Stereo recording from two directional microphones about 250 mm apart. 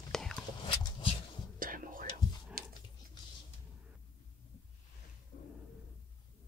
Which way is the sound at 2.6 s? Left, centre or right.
Right.